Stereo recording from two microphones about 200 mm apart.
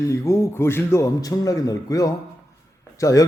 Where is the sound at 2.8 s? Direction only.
15° left (ahead or behind).